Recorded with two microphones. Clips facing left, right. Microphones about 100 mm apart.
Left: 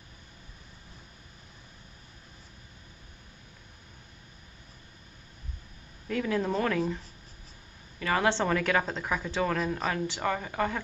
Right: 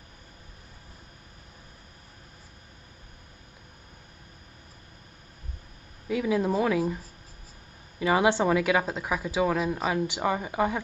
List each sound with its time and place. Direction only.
6.0 s speech: 10° right (ahead or behind)
8.0 s speech: 15° right (ahead or behind)